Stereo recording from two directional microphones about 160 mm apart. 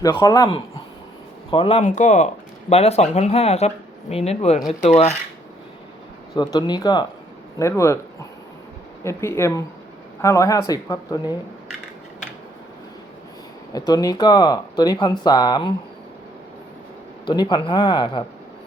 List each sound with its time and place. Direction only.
0.0 s speech: 25° left (ahead or behind)
1.5 s speech: 35° left (ahead or behind)
1.8 s speech: 50° left (ahead or behind)
4.8 s dishes: 45° left (ahead or behind)
6.3 s speech: 25° left (ahead or behind)
9.0 s speech: 15° left (ahead or behind)
13.7 s speech: 25° left (ahead or behind)
17.2 s speech: 30° left (ahead or behind)